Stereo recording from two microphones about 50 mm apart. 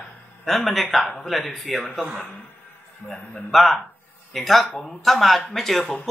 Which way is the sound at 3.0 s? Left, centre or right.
Left.